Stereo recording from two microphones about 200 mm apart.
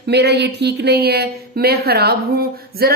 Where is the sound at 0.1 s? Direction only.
55° right (ahead or behind).